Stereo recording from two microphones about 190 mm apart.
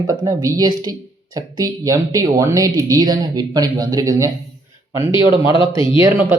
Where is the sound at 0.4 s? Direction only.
20° right (ahead or behind).